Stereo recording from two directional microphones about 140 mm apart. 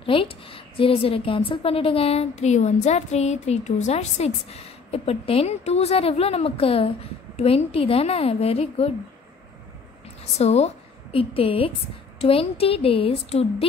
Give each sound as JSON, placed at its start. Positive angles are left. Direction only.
{"t": 0.0, "sound": "a woman's voice", "side_deg": 40}
{"t": 10.4, "sound": "a woman's voice", "side_deg": 50}